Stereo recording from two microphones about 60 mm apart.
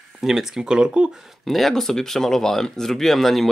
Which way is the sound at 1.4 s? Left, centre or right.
Centre.